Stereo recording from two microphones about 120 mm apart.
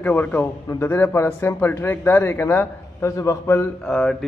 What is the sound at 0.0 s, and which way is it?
Speech, 15° left (ahead or behind).